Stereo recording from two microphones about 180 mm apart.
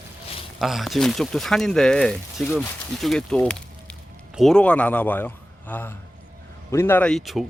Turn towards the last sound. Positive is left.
turn(degrees=0)  # may be behind; listen again after turning